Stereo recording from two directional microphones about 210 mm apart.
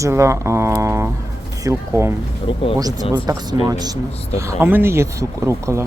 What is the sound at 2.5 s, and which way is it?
Speech, 25° left (ahead or behind).